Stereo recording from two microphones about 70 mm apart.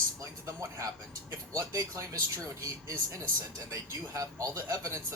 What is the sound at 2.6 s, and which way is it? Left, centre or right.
Speech, right.